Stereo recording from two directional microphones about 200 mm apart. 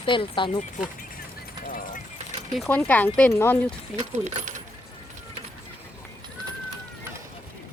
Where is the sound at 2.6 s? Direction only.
10° left (ahead or behind).